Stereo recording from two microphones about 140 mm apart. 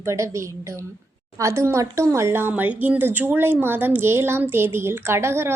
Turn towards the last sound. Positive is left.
turn(degrees=-20)  # may be behind; listen again after turning